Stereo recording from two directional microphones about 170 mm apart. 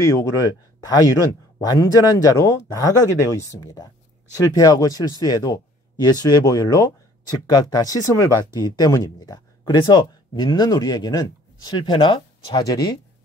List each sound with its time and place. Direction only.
0.0 s speech: 20° left (ahead or behind)